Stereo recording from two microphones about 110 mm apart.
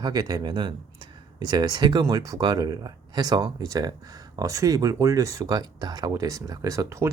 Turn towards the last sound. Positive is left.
turn(degrees=-30)  # may be behind; listen again after turning